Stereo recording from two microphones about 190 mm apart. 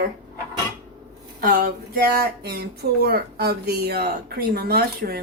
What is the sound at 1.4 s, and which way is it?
Speech, 50° right (ahead or behind).